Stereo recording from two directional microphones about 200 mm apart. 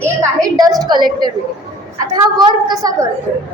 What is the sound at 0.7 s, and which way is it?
Speech, 20° right (ahead or behind).